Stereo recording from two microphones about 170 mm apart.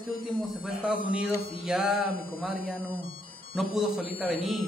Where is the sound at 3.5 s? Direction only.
Centre (ahead or behind).